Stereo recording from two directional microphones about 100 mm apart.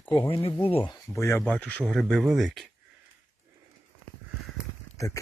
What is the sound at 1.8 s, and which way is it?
Speech, 5° left (ahead or behind).